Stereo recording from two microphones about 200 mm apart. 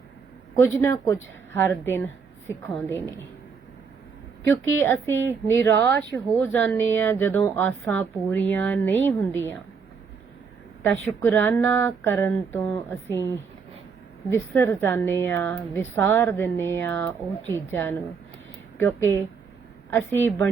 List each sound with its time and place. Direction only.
0.5 s a woman's voice: 15° left (ahead or behind)
4.8 s a woman's voice: 10° left (ahead or behind)
11.2 s a woman's voice: 10° left (ahead or behind)
18.9 s a woman's voice: 10° left (ahead or behind)